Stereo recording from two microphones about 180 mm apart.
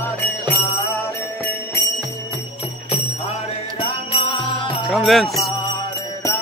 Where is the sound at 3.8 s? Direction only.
30° left (ahead or behind).